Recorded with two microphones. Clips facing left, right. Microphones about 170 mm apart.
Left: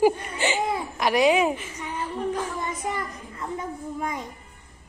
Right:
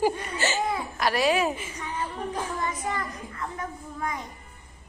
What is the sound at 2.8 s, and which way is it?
A child's voice, 20° left (ahead or behind).